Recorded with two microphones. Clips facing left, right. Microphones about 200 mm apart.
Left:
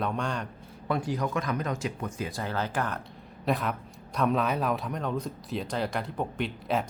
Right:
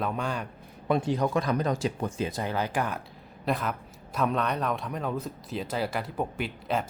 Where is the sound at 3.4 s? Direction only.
Centre (ahead or behind).